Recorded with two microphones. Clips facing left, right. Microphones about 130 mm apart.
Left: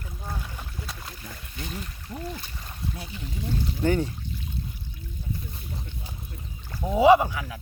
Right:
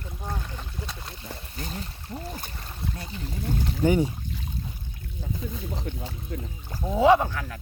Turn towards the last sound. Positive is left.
turn(degrees=10)  # may be behind; listen again after turning